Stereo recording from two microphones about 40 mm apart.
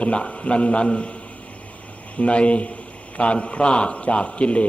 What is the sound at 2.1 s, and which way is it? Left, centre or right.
A man's voice, left.